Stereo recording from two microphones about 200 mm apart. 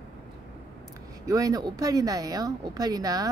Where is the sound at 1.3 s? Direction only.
15° right (ahead or behind).